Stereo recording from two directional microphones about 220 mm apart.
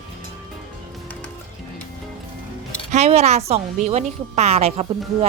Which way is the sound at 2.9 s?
30° right (ahead or behind).